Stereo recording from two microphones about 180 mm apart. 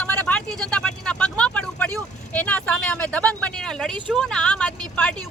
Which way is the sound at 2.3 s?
10° left (ahead or behind).